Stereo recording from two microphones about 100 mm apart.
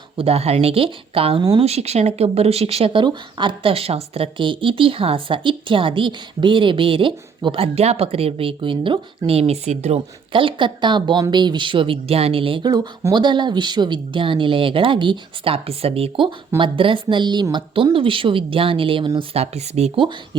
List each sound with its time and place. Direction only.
0.2 s speech: 85° right
1.4 s speech: 45° right (ahead or behind)
1.6 s speech: 90° right
3.0 s speech: 50° right (ahead or behind)
12.6 s speech: 40° right (ahead or behind); by 16.3 s 70° right (ahead or behind)
16.6 s speech: 60° right (ahead or behind)
17.9 s speech: 60° right (ahead or behind)
19.3 s speech: 90° right